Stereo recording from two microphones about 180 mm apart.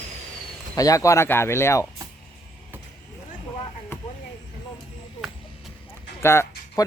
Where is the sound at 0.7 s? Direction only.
20° left (ahead or behind).